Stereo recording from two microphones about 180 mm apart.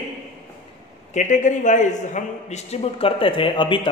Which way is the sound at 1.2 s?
40° left (ahead or behind).